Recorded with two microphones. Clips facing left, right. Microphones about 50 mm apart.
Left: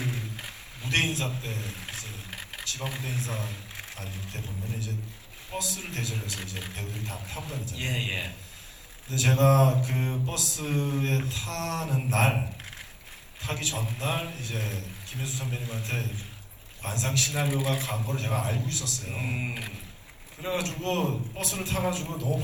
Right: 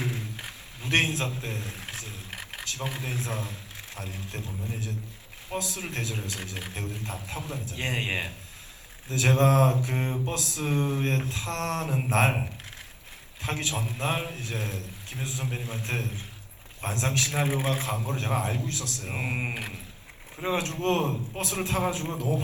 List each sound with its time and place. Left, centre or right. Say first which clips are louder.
1.4 s a man's voice: right 1 dB; right
2.3 s a sound: right 1 dB; right
2.7 s a man's voice: right 1 dB; right
3.4 s a sound: left 1 dB; left
3.9 s a man's voice: right 5 dB; right
13.4 s a man's voice: right 2 dB; right
14.6 s a man's voice: right 1 dB; left
15.4 s a man's voice: right 2 dB; right
20.4 s a man's voice: right 3 dB; right